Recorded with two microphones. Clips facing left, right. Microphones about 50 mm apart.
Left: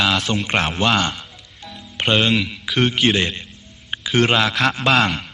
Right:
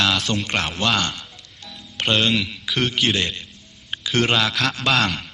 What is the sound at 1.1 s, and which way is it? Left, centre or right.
Music, centre.